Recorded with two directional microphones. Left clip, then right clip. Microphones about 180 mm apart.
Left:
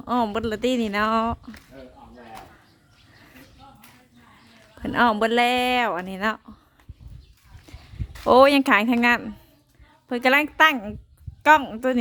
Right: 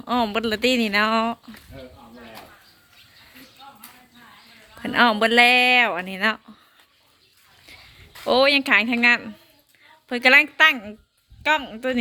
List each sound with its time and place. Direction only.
0.0 s a woman's voice: 25° left (ahead or behind)
4.8 s a woman's voice: 25° left (ahead or behind)
7.7 s a sound: 35° left (ahead or behind)
8.2 s speech: 40° left (ahead or behind)